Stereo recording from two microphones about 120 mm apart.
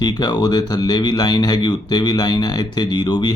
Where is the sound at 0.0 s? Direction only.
35° left (ahead or behind).